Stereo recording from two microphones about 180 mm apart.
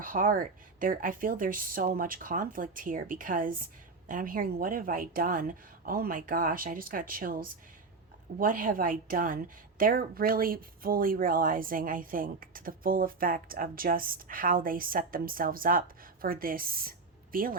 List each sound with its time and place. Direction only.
0.0 s a woman's voice: 50° right (ahead or behind)